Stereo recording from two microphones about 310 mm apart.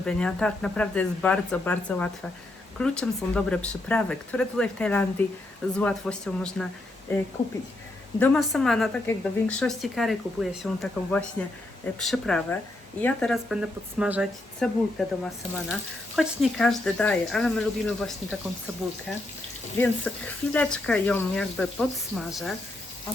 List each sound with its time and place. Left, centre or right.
0.0 s speech: centre
8.2 s speech: centre
19.8 s speech: centre